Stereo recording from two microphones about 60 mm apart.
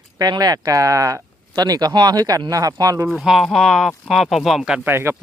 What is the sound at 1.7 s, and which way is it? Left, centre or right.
Speech, right.